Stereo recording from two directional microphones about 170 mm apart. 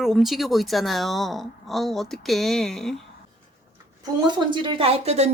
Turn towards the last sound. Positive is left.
turn(degrees=-40)  # may be behind; listen again after turning